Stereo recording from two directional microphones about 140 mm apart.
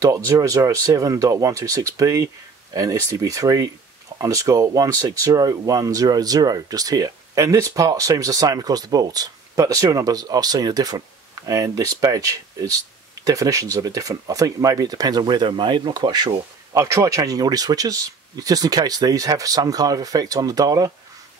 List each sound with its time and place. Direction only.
0.0 s speech: 25° right (ahead or behind)